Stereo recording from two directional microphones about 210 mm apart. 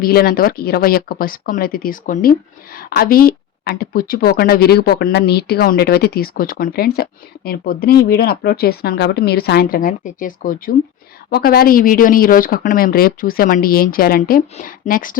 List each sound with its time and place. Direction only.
0.0 s speech: 45° left (ahead or behind)